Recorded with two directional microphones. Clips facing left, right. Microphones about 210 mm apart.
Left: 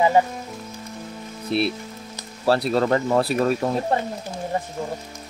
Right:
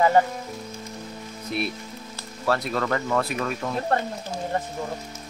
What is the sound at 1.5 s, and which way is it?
Speech, 30° left (ahead or behind).